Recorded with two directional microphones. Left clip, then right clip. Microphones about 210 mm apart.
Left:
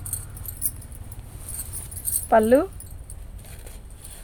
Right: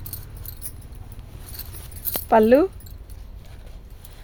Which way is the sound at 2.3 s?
50° right (ahead or behind).